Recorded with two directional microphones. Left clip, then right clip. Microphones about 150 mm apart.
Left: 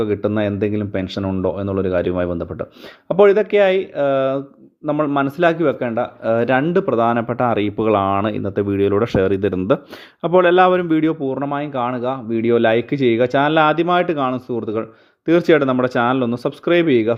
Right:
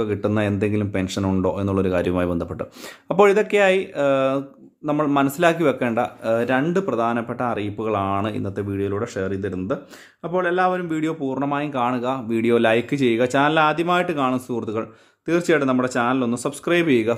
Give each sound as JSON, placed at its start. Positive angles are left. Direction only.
{"t": 0.0, "sound": "speech", "side_deg": 20}
{"t": 6.2, "sound": "speech", "side_deg": 35}
{"t": 10.8, "sound": "speech", "side_deg": 30}
{"t": 15.3, "sound": "speech", "side_deg": 30}